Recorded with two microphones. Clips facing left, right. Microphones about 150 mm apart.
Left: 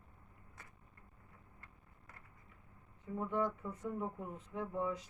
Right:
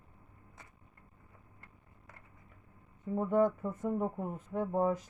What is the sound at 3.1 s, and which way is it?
Speech, 50° right (ahead or behind).